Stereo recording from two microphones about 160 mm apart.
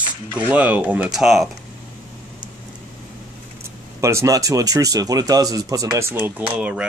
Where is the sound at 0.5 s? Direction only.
10° right (ahead or behind).